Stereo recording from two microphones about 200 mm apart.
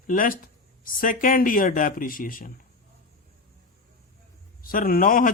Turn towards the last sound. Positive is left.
turn(degrees=45)  # may be behind; listen again after turning